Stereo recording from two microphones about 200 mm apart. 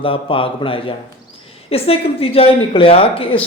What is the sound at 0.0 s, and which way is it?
Speech, 25° left (ahead or behind).